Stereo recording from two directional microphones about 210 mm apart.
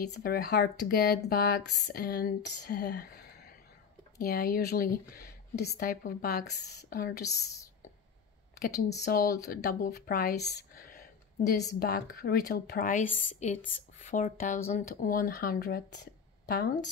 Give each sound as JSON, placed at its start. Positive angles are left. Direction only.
{"t": 0.1, "sound": "speech", "side_deg": 45}
{"t": 7.2, "sound": "a woman's voice", "side_deg": 15}
{"t": 8.5, "sound": "a woman's voice", "side_deg": 40}